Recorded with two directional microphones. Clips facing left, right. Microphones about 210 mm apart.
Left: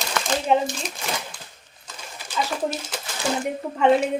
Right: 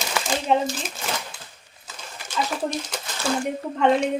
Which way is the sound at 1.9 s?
5° left (ahead or behind).